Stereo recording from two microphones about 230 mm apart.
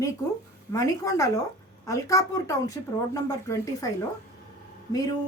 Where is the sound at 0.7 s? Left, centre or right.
Centre.